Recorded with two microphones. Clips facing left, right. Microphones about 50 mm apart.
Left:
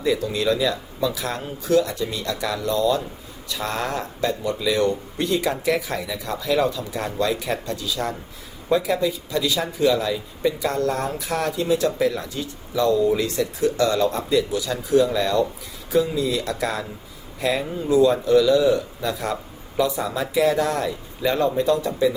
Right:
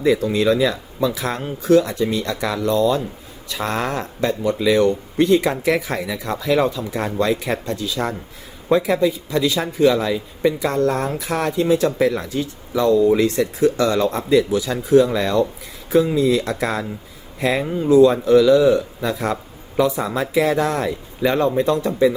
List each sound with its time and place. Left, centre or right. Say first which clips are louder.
0.0 s speech: right 5 dB; right